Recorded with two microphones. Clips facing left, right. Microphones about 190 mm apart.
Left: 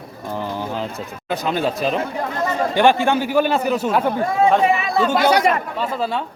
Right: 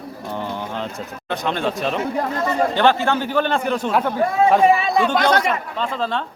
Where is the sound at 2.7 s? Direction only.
15° left (ahead or behind).